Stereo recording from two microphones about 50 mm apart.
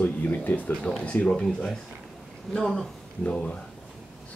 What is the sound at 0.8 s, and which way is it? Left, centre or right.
Speech, left.